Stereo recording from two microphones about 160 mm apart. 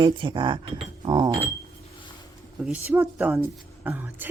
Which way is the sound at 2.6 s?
5° right (ahead or behind).